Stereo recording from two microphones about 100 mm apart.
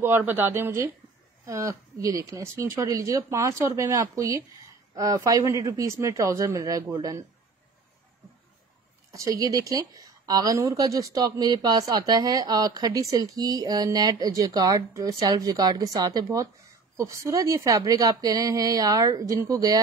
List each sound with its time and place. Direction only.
0.0 s a woman's voice: 20° right (ahead or behind)
9.1 s a woman's voice: 35° right (ahead or behind)